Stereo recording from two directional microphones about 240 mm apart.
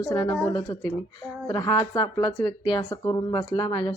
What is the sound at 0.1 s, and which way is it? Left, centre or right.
Speech, centre.